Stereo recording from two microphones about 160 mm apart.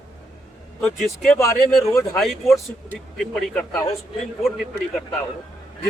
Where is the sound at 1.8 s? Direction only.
20° left (ahead or behind).